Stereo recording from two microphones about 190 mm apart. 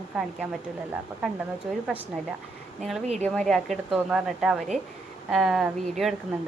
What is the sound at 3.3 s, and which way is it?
Speech, 5° left (ahead or behind).